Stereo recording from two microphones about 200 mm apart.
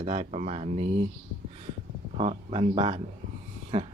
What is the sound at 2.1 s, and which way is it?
Speech, 30° right (ahead or behind).